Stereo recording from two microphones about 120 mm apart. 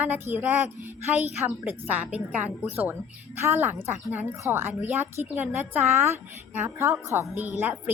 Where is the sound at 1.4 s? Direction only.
15° right (ahead or behind).